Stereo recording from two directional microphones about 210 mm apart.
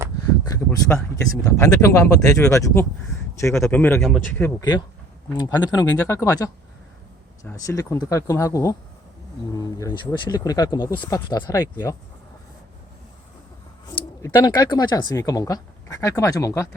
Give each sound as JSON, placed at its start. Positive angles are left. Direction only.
{"t": 0.4, "sound": "speech", "side_deg": 15}
{"t": 14.2, "sound": "speech", "side_deg": 20}